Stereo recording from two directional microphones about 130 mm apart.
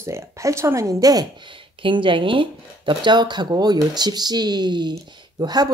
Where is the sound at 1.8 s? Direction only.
40° right (ahead or behind).